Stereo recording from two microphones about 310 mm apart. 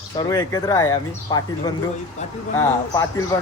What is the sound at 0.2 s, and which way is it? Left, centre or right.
Speech, centre.